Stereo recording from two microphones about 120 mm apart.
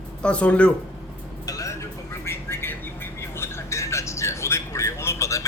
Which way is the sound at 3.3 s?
20° left (ahead or behind).